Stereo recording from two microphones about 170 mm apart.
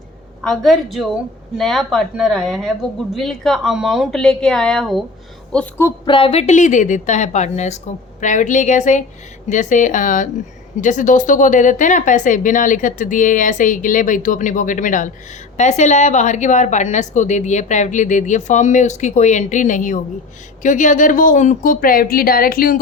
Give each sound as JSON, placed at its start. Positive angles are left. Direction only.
{"t": 0.4, "sound": "a woman's voice", "side_deg": 0}
{"t": 6.1, "sound": "a woman's voice", "side_deg": 30}